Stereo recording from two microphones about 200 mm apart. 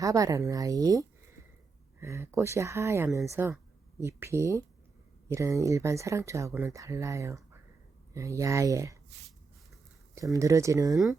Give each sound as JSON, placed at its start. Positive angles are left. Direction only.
{"t": 0.0, "sound": "speech", "side_deg": -15}
{"t": 10.3, "sound": "speech", "side_deg": -15}
{"t": 10.9, "sound": "speech", "side_deg": 0}